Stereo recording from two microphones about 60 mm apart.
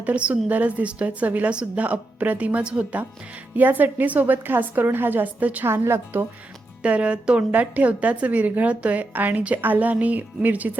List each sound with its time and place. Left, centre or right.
0.0 s a woman's voice: right
5.6 s a woman's voice: right
6.8 s a woman's voice: centre